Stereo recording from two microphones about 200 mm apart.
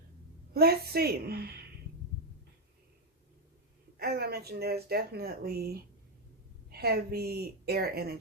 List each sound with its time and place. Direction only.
0.5 s speech: 50° right (ahead or behind)
3.9 s speech: 50° right (ahead or behind)